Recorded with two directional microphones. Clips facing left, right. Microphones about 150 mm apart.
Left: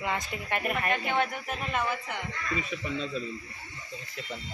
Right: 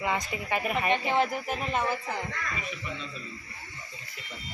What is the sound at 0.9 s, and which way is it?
Speech, 30° right (ahead or behind).